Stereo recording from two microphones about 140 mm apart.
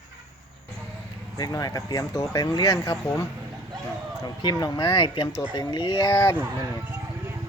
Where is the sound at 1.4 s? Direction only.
25° left (ahead or behind).